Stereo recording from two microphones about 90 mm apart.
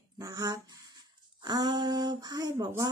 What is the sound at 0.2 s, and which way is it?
Speech, 40° right (ahead or behind).